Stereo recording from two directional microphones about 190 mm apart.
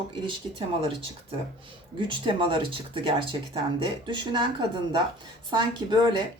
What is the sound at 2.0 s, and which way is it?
Speech, 25° right (ahead or behind).